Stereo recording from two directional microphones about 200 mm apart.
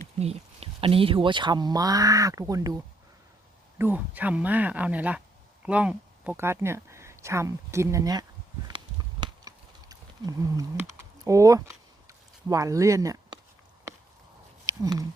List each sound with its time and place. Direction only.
0.2 s speech: 30° right (ahead or behind)
9.2 s typing: 20° right (ahead or behind)
12.0 s a sound: 15° right (ahead or behind)
14.7 s speech: 15° right (ahead or behind)